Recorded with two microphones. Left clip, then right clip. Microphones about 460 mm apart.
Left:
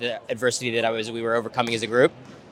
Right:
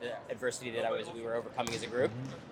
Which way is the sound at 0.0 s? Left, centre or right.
Left.